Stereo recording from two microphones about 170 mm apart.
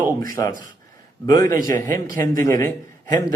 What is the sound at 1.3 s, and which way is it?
Speech, 20° left (ahead or behind).